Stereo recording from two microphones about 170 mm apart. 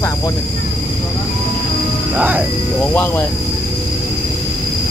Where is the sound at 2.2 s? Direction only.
10° right (ahead or behind).